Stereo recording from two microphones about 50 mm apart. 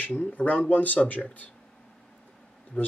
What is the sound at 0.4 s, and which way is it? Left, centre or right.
Speech, left.